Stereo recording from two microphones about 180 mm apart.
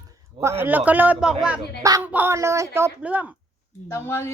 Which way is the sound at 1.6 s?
20° right (ahead or behind).